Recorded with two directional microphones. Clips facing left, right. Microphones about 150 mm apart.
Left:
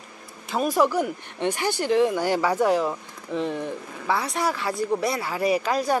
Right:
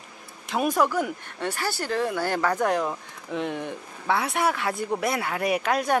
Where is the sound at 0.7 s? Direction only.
10° left (ahead or behind).